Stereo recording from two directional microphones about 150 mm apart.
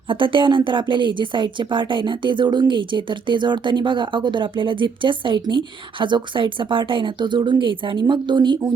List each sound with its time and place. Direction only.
0.1 s a woman's voice: 35° right (ahead or behind)